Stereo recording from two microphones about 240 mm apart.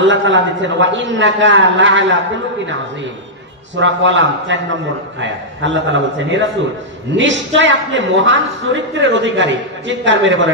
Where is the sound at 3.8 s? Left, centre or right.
Right.